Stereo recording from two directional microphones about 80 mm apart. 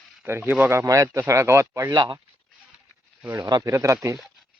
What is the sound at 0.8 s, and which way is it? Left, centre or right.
Speech, right.